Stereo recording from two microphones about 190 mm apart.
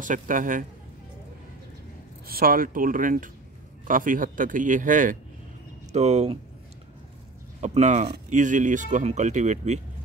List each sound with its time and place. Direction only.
0.0 s speech: 45° right (ahead or behind)
2.2 s speech: 50° right (ahead or behind); by 6.3 s 35° right (ahead or behind)
7.6 s speech: 40° right (ahead or behind)